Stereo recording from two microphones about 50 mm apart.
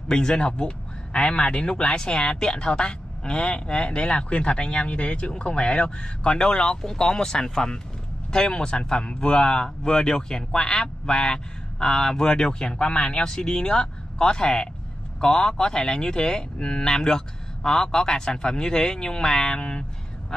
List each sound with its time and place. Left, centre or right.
0.1 s speech: centre